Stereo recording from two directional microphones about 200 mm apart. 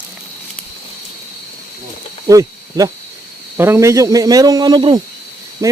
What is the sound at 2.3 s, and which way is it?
A man's voice, 15° right (ahead or behind).